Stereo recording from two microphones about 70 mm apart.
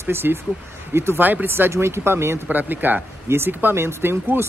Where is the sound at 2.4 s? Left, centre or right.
Right.